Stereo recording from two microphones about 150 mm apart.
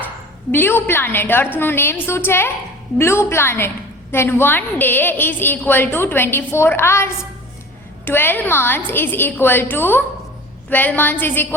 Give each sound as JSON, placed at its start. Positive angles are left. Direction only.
{"t": 0.5, "sound": "a woman's voice", "side_deg": 15}